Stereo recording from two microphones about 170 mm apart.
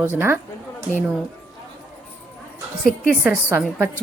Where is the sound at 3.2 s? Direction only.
10° right (ahead or behind).